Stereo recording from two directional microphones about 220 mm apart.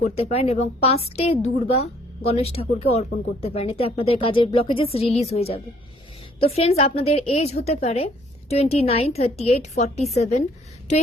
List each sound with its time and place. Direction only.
0.0 s a woman's voice: 30° left (ahead or behind)